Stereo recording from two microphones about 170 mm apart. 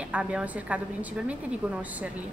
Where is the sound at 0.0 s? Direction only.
5° right (ahead or behind).